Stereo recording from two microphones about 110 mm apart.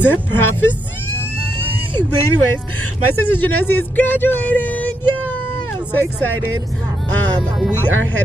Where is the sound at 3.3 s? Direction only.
15° left (ahead or behind).